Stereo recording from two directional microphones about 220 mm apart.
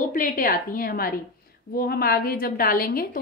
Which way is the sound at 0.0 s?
35° left (ahead or behind).